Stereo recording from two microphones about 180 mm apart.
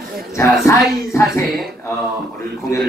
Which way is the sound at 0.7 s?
15° left (ahead or behind).